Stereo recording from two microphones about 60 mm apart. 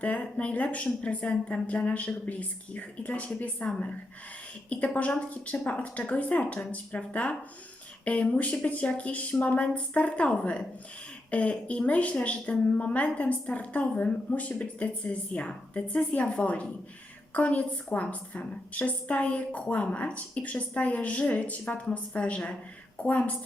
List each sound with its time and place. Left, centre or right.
0.0 s a woman's voice: left